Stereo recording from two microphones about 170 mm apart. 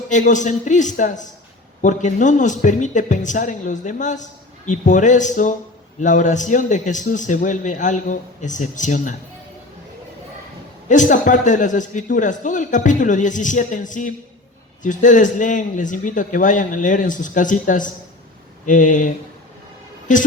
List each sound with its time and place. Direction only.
0.1 s speech: 45° left (ahead or behind)
10.8 s speech: 45° left (ahead or behind)